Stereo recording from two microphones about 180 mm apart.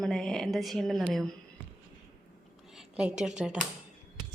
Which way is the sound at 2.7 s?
5° right (ahead or behind).